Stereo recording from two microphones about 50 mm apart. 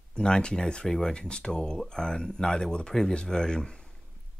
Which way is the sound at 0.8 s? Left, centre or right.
Centre.